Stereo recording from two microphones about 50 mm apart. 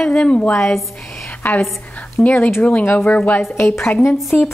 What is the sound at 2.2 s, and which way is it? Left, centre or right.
Speech, left.